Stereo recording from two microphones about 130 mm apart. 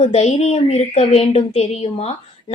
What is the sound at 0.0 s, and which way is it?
A woman's voice, 55° left (ahead or behind).